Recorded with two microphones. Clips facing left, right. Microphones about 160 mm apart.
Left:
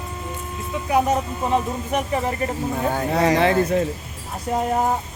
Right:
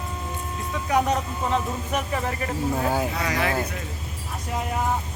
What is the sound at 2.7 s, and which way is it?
Speech, 5° right (ahead or behind).